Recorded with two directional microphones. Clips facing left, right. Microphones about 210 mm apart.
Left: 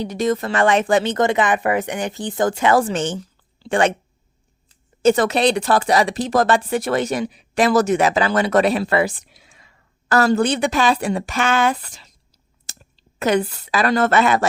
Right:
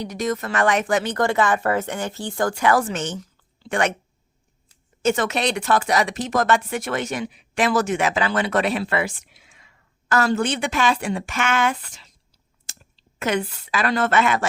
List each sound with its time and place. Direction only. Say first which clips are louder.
0.0 s speech: left 5 dB; 30° left (ahead or behind)
5.0 s speech: left 6 dB; 35° left (ahead or behind)